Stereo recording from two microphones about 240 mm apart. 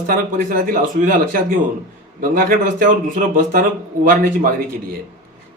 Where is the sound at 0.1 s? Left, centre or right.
Right.